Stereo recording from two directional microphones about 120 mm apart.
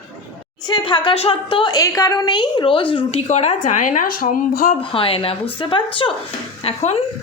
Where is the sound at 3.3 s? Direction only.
70° left (ahead or behind); by 4.1 s 90° left.